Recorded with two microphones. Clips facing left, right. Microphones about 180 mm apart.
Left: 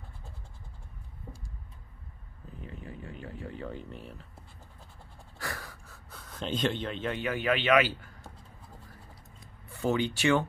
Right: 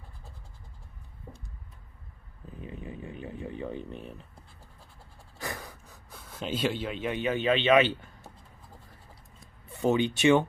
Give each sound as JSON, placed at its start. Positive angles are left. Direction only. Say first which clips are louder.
{"t": 2.6, "sound": "a sound", "louder": "right 3 dB", "side_deg": -15}
{"t": 5.4, "sound": "speech", "louder": "right 2 dB", "side_deg": -20}
{"t": 9.7, "sound": "speech", "louder": "right 3 dB", "side_deg": -20}